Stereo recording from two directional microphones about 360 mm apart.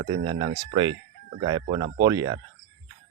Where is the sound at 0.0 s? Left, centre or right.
Centre.